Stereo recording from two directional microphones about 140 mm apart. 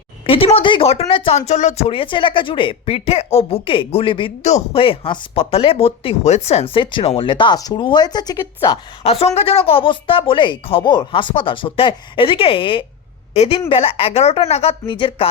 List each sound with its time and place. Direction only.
0.3 s speech: 40° left (ahead or behind)
1.4 s speech: 55° left (ahead or behind); by 4.3 s 35° left (ahead or behind)
4.4 s speech: 50° left (ahead or behind); by 8.8 s 30° left (ahead or behind)
9.0 s a woman's voice: 45° left (ahead or behind)